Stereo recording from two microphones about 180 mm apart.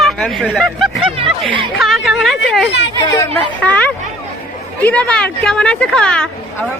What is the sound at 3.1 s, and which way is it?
Speech, 15° left (ahead or behind).